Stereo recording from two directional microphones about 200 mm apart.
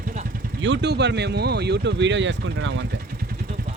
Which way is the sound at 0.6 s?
65° right (ahead or behind).